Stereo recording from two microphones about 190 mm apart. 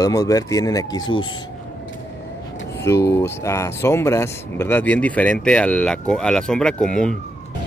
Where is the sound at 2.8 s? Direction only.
15° left (ahead or behind).